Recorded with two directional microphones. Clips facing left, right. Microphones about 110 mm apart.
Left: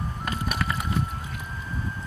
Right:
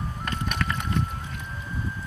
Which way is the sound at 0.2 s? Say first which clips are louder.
Even; 5° left (ahead or behind).